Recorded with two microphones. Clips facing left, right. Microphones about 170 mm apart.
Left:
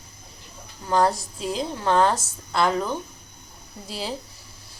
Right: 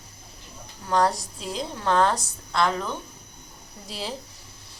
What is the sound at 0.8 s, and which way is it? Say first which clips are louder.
A woman's voice: left 2 dB; centre (ahead or behind).